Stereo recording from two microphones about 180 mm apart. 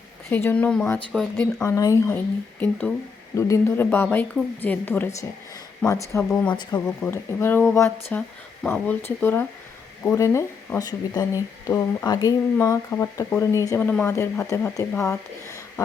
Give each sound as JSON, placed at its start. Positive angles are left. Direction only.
{"t": 0.3, "sound": "speech", "side_deg": 10}
{"t": 1.6, "sound": "speech", "side_deg": 15}
{"t": 2.6, "sound": "speech", "side_deg": 5}
{"t": 3.3, "sound": "speech", "side_deg": 15}
{"t": 6.8, "sound": "speech", "side_deg": 10}